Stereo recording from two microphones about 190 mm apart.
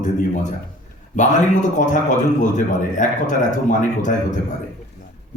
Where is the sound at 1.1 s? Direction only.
40° left (ahead or behind).